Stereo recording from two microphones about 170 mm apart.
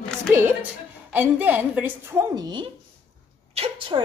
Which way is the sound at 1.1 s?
10° right (ahead or behind).